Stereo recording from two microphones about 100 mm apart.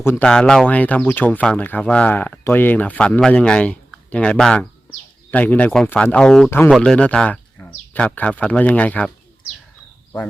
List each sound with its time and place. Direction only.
0.2 s speech: 10° left (ahead or behind)